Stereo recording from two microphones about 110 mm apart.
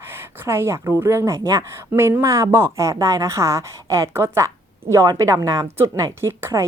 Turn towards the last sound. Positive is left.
turn(degrees=-25)  # may be behind; listen again after turning